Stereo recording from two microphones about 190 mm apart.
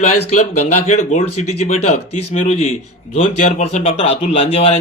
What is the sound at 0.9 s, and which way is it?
A man's voice, 35° left (ahead or behind).